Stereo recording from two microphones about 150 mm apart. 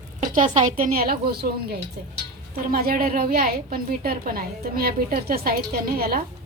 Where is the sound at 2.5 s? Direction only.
75° right (ahead or behind).